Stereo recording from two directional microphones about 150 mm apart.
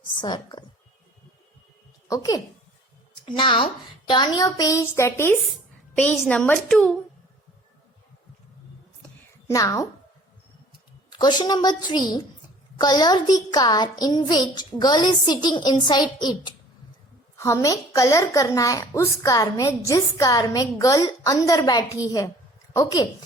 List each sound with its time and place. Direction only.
0.2 s a woman's voice: 30° left (ahead or behind)
2.0 s a woman's voice: 25° left (ahead or behind)
3.2 s a woman's voice: 35° left (ahead or behind); by 6.9 s 5° left (ahead or behind)
9.5 s a woman's voice: 20° left (ahead or behind)
11.1 s a woman's voice: 30° left (ahead or behind)
17.3 s a woman's voice: 20° left (ahead or behind)